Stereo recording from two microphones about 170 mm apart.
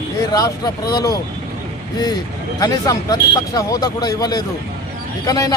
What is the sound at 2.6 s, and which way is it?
Speech, 20° left (ahead or behind).